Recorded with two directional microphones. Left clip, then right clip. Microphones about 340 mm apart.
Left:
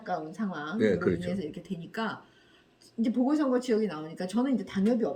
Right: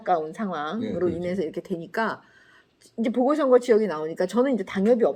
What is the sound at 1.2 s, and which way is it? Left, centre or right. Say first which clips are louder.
A woman's voice: right 8 dB; centre.